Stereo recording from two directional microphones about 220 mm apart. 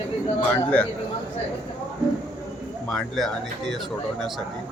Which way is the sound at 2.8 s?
Centre (ahead or behind).